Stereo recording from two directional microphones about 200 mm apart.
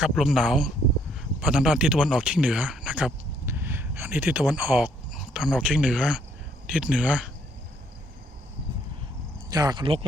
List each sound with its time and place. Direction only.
0.0 s speech: centre (ahead or behind)
9.5 s speech: 20° right (ahead or behind)